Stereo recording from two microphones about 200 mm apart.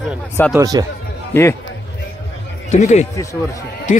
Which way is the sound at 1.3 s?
10° left (ahead or behind).